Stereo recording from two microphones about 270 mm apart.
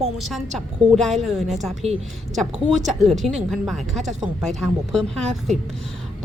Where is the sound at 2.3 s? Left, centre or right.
Centre.